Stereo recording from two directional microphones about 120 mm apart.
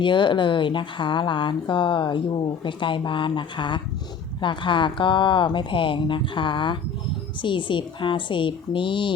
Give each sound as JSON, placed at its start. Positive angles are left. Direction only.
{"t": 0.0, "sound": "speech", "side_deg": 40}